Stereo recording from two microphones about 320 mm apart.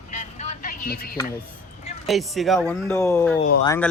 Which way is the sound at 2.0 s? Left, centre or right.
Centre.